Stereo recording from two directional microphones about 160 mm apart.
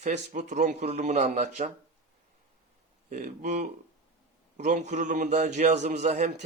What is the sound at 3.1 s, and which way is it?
A man's voice, 50° right (ahead or behind).